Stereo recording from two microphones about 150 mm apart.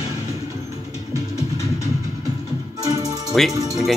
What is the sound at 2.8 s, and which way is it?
Music, 25° right (ahead or behind).